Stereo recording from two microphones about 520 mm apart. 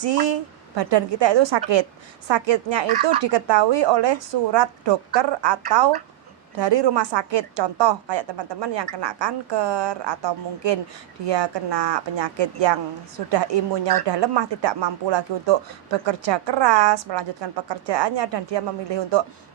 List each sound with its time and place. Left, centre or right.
0.0 s a woman's voice: right